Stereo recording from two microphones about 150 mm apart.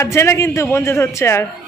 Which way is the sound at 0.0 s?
20° left (ahead or behind).